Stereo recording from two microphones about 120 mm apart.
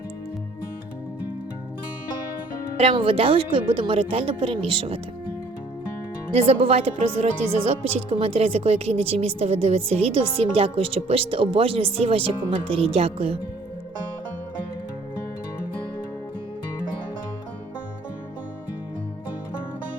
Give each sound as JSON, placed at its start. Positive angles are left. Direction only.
{"t": 2.7, "sound": "speech", "side_deg": -50}
{"t": 6.3, "sound": "speech", "side_deg": -60}